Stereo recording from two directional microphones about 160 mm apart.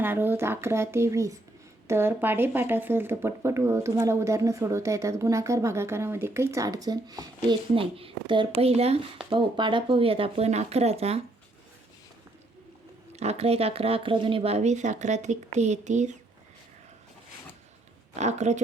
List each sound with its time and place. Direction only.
0.0 s speech: 15° right (ahead or behind)
7.8 s speech: 35° right (ahead or behind)
13.1 s speech: 40° right (ahead or behind)
18.2 s speech: 45° right (ahead or behind)